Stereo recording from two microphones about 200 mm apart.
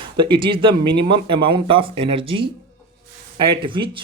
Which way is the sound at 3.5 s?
25° right (ahead or behind).